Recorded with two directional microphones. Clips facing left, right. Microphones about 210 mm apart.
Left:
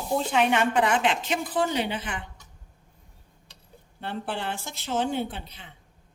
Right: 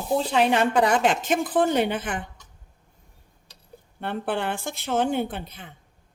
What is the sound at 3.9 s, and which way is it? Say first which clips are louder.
Speech: right 5 dB; 55° right (ahead or behind).